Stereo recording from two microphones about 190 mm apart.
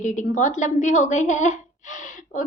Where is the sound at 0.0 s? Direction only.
40° left (ahead or behind).